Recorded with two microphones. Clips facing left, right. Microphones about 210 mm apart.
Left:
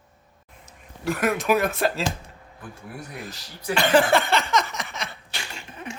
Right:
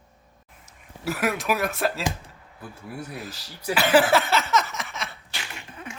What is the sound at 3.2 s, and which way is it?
Speech, 5° right (ahead or behind).